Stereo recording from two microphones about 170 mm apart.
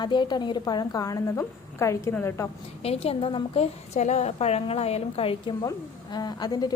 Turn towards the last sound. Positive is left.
turn(degrees=25)  # may be behind; listen again after turning